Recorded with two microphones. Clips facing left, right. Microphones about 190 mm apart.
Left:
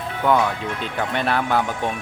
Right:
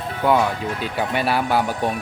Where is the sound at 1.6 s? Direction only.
35° right (ahead or behind).